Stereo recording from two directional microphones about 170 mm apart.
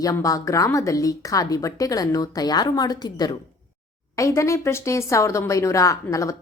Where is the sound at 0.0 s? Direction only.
20° left (ahead or behind).